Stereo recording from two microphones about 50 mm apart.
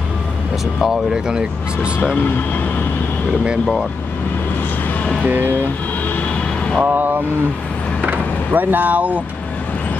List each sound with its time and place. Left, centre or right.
0.7 s speech: centre
6.8 s speech: right